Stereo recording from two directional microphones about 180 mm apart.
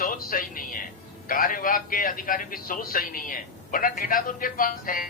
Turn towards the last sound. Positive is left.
turn(degrees=50)  # may be behind; listen again after turning